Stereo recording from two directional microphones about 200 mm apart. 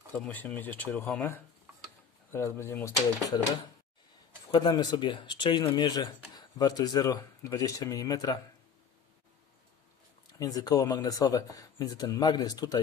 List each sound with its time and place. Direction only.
0.1 s speech: 10° left (ahead or behind)
4.5 s speech: 20° left (ahead or behind)
10.4 s speech: 20° left (ahead or behind)